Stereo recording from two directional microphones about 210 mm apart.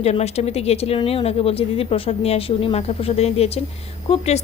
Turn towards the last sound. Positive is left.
turn(degrees=30)  # may be behind; listen again after turning